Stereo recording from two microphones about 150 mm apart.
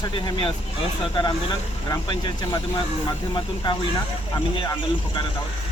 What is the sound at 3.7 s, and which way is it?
Speech, 30° left (ahead or behind).